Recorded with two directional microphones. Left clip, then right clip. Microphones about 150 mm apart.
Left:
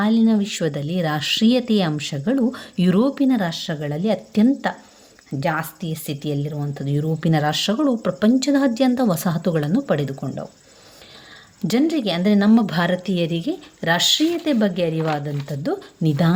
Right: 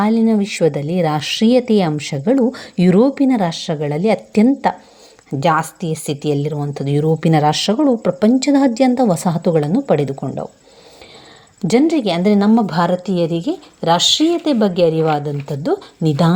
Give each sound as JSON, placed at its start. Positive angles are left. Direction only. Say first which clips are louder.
{"t": 0.0, "sound": "a woman's voice", "louder": "right 4 dB", "side_deg": -25}
{"t": 11.6, "sound": "a woman's voice", "louder": "right 6 dB", "side_deg": -30}
{"t": 12.5, "sound": "a woman's voice", "louder": "right 4 dB", "side_deg": -15}